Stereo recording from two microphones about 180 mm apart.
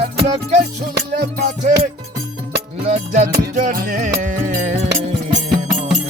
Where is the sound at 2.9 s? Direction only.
40° right (ahead or behind).